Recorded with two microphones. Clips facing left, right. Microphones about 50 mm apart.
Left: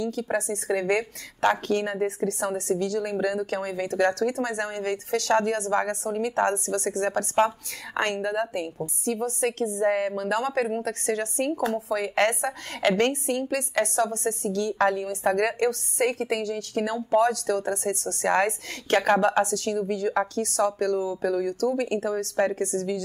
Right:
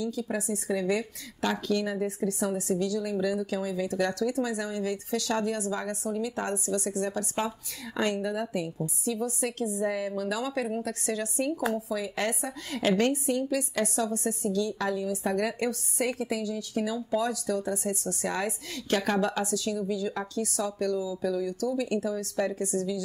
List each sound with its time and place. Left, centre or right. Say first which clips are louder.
0.0 s a woman's voice: left 4 dB; left